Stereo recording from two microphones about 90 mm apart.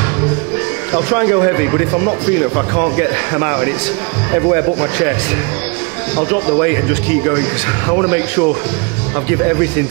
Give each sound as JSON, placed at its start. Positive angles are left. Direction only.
{"t": 0.9, "sound": "speech", "side_deg": -15}
{"t": 6.1, "sound": "a man's voice", "side_deg": -10}